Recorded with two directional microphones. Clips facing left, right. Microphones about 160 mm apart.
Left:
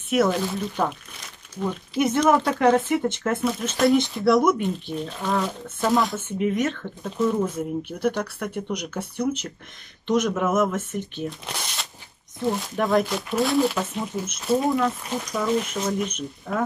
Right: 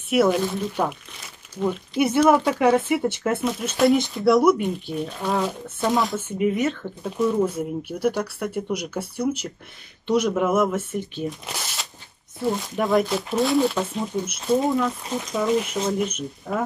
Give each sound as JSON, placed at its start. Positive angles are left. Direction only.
{"t": 0.1, "sound": "speech", "side_deg": -10}
{"t": 15.2, "sound": "speech", "side_deg": -25}
{"t": 16.2, "sound": "speech", "side_deg": -10}